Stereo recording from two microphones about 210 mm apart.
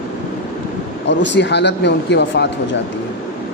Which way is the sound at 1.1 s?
55° left (ahead or behind).